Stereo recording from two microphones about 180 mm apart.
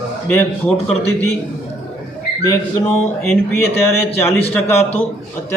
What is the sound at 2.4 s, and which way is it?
A man's voice, 15° left (ahead or behind).